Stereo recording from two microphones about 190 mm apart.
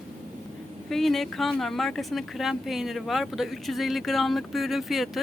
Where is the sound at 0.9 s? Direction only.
Centre (ahead or behind).